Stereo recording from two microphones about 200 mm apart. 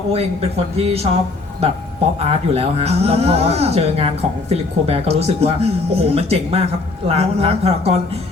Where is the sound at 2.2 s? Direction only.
30° right (ahead or behind).